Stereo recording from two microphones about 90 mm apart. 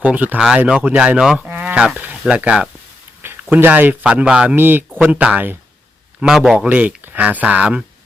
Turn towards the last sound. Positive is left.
turn(degrees=-15)  # may be behind; listen again after turning